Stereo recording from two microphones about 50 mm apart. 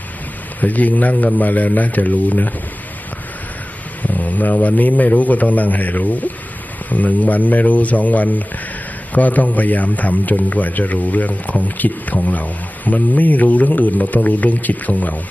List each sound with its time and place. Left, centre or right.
0.6 s speech: left
4.0 s speech: left